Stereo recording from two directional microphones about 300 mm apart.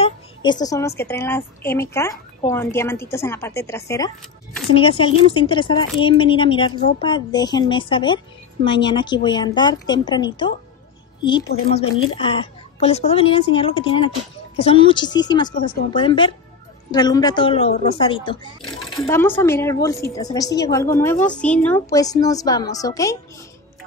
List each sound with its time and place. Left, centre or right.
0.0 s speech: centre